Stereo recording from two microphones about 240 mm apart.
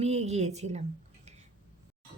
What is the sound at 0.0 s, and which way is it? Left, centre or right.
Speech, right.